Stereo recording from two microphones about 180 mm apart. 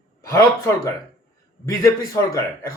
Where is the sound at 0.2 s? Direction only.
15° left (ahead or behind).